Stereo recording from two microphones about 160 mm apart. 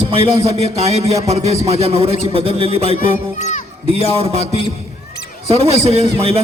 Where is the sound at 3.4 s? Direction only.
45° left (ahead or behind).